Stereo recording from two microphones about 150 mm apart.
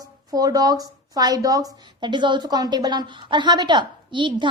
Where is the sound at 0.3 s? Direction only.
25° right (ahead or behind).